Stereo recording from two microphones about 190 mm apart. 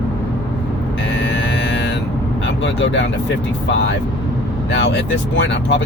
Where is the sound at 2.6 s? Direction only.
70° left (ahead or behind).